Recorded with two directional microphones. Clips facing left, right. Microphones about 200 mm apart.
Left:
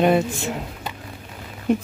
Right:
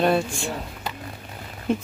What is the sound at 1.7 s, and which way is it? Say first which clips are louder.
Speech: left 4 dB; 15° left (ahead or behind).